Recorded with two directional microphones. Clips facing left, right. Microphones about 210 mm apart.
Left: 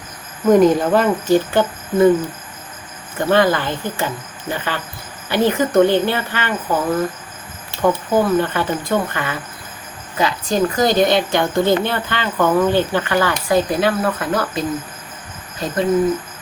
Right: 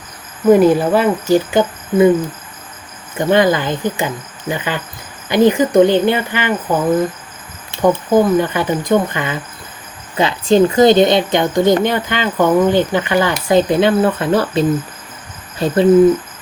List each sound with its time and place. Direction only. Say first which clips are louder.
0.5 s speech: right 1 dB; 10° right (ahead or behind)
3.2 s speech: right 2 dB; 15° right (ahead or behind)